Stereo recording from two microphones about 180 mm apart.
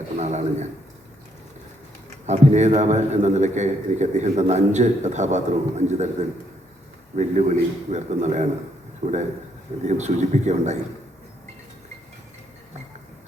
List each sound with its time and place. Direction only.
0.2 s a man's voice: 40° right (ahead or behind)
2.2 s a man's voice: 40° right (ahead or behind)